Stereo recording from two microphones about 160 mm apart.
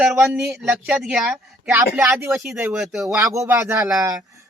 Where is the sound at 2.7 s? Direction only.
Centre (ahead or behind).